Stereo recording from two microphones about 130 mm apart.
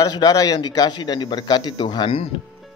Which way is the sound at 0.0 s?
30° left (ahead or behind).